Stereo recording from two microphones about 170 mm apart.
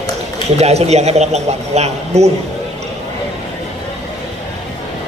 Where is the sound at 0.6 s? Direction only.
40° right (ahead or behind).